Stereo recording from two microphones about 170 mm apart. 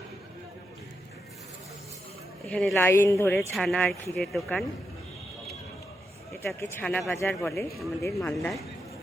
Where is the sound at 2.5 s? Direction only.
5° left (ahead or behind).